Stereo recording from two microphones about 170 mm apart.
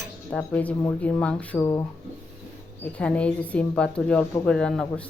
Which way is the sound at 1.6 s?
20° left (ahead or behind).